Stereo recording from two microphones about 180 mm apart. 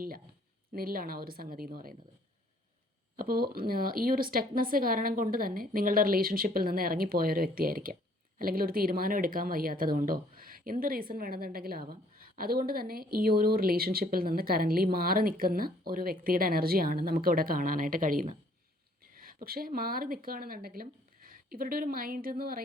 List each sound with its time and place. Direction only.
0.7 s a woman's voice: 55° right (ahead or behind)
3.2 s a woman's voice: 55° right (ahead or behind)